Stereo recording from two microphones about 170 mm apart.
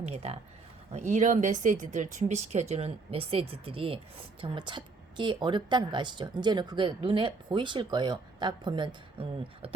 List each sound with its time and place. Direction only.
0.0 s a woman's voice: 40° right (ahead or behind)